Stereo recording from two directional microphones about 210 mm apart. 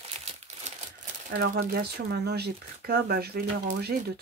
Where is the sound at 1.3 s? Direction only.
50° right (ahead or behind).